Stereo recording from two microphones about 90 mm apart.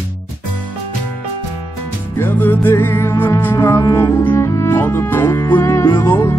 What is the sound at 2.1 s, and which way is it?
Music, 20° left (ahead or behind).